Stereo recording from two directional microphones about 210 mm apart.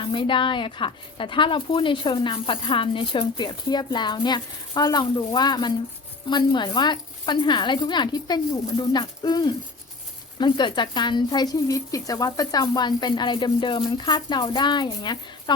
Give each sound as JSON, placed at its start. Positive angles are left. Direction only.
{"t": 0.0, "sound": "a woman's voice", "side_deg": 25}